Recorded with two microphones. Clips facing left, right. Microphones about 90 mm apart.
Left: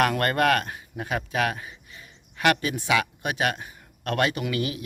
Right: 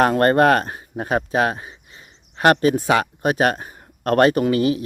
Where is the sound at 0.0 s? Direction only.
30° right (ahead or behind).